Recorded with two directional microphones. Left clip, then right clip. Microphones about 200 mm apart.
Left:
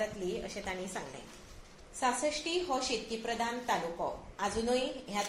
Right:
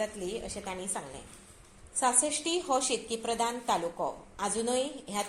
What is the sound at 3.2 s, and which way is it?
A woman's voice, 40° right (ahead or behind).